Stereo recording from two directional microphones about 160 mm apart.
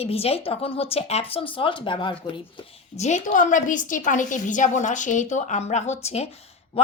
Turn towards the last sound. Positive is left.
turn(degrees=40)  # may be behind; listen again after turning